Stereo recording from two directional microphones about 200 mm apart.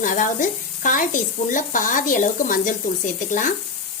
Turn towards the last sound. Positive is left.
turn(degrees=40)  # may be behind; listen again after turning